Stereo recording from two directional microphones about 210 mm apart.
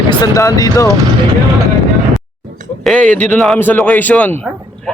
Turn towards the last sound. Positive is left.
turn(degrees=5)  # may be behind; listen again after turning